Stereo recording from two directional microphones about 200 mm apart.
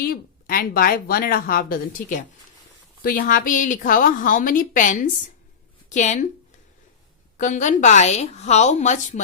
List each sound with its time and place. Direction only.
0.0 s a woman's voice: 50° left (ahead or behind)
7.3 s a woman's voice: 40° left (ahead or behind)